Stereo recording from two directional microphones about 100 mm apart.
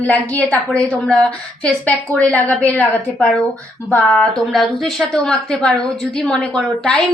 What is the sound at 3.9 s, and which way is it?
A woman's voice, 10° left (ahead or behind).